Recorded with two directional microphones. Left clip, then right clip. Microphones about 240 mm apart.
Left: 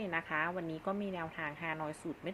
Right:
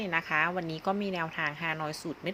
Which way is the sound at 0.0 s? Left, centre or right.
Centre.